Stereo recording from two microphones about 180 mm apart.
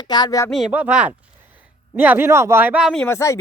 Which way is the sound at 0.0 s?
25° left (ahead or behind).